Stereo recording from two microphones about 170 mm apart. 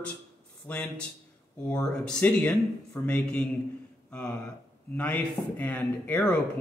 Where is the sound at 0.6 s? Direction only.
10° left (ahead or behind).